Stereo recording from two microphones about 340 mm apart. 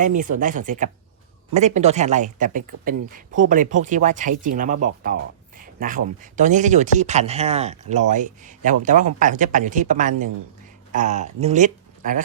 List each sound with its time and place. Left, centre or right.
0.0 s speech: right
5.5 s a sound: right
6.3 s speech: right